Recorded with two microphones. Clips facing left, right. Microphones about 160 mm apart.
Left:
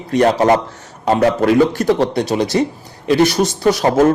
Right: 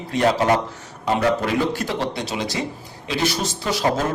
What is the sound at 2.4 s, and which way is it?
A man's voice, 65° left (ahead or behind).